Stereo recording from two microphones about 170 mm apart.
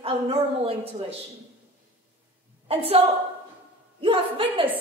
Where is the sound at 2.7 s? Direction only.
35° right (ahead or behind).